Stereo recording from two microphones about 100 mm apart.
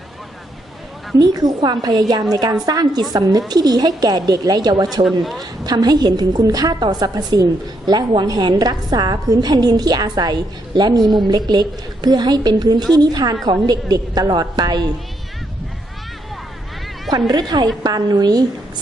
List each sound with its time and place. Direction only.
1.2 s a woman's voice: 40° right (ahead or behind)
17.2 s a woman's voice: 45° right (ahead or behind)